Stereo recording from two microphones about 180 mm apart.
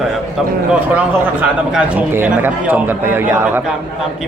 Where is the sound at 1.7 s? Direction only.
10° right (ahead or behind).